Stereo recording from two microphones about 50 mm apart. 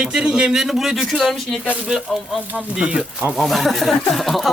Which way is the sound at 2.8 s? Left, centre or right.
Right.